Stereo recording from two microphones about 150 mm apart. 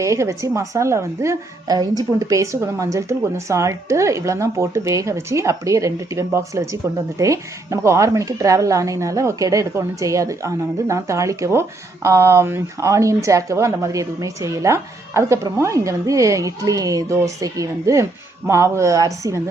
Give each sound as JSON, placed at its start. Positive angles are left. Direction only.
{"t": 0.0, "sound": "a woman's voice", "side_deg": -20}